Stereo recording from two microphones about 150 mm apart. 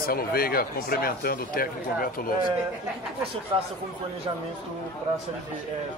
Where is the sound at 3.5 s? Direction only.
35° right (ahead or behind).